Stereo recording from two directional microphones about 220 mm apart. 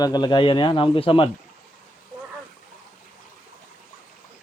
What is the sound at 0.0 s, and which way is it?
A man's voice, 20° left (ahead or behind).